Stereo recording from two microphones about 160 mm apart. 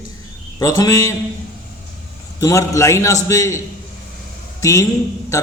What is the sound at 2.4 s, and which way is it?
A man's voice, 20° left (ahead or behind).